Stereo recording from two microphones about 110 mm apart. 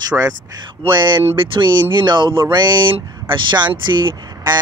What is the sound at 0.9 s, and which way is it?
Speech, 45° right (ahead or behind).